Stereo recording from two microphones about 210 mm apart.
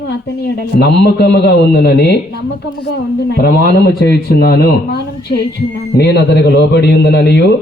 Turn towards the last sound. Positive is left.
turn(degrees=50)  # may be behind; listen again after turning